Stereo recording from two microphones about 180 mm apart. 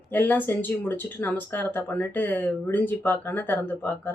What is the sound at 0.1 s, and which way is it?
Speech, 10° left (ahead or behind).